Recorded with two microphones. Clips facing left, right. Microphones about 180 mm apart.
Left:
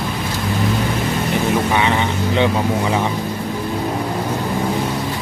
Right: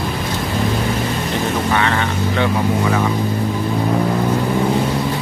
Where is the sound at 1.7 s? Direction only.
15° left (ahead or behind).